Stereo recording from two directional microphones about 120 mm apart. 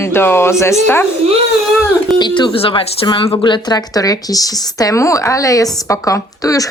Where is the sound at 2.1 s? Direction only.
40° left (ahead or behind).